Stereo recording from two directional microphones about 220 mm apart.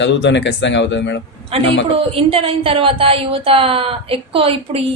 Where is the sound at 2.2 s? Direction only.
25° right (ahead or behind).